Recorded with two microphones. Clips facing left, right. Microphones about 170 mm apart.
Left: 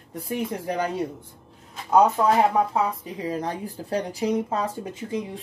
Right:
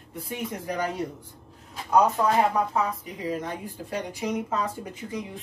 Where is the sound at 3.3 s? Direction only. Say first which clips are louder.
Left 2 dB; 35° left (ahead or behind).